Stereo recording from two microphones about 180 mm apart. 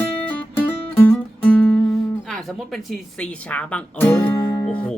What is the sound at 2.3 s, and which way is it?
Speech, centre (ahead or behind).